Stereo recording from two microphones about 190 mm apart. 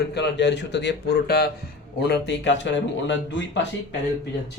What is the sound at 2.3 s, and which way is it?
Speech, 70° left (ahead or behind).